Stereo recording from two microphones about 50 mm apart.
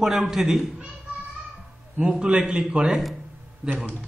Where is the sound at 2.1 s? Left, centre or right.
Centre.